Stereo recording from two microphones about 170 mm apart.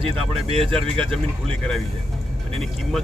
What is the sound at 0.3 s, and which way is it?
Speech, 35° right (ahead or behind).